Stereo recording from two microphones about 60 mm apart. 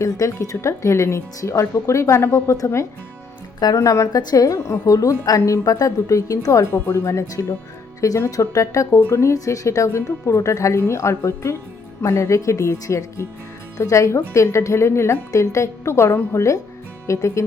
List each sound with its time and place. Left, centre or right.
0.0 s a woman's voice: left
3.6 s a woman's voice: left
8.0 s a woman's voice: left
9.0 s a woman's voice: left
9.3 s a woman's voice: left